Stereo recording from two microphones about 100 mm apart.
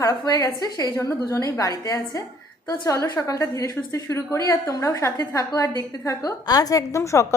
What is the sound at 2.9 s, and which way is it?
A woman's voice, 30° left (ahead or behind).